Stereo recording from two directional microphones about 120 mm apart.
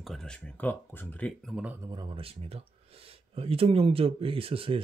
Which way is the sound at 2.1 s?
55° right (ahead or behind).